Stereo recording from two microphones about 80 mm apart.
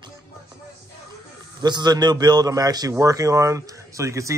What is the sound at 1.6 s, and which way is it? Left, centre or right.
A man's voice, right.